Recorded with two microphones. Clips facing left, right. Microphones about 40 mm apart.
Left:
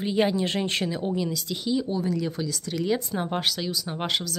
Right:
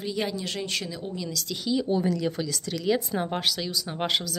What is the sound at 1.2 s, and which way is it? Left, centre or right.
Speech, centre.